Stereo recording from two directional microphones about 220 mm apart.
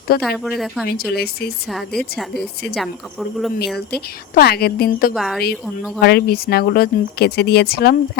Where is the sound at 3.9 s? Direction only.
45° left (ahead or behind).